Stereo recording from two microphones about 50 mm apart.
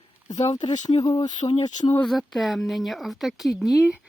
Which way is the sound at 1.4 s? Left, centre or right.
Left.